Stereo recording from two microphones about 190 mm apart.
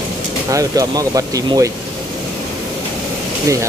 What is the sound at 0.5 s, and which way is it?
Speech, 20° right (ahead or behind).